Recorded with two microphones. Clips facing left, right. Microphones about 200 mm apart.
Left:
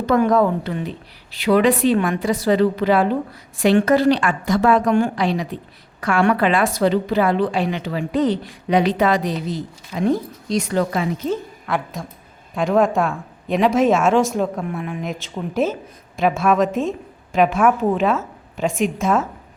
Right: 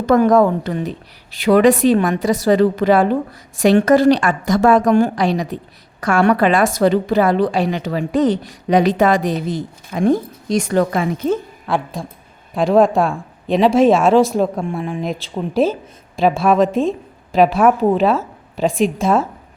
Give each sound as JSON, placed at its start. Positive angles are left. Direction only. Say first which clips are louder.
{"t": 0.0, "sound": "a woman's voice", "louder": "right 4 dB", "side_deg": -45}
{"t": 11.7, "sound": "speech", "louder": "right 3 dB", "side_deg": -30}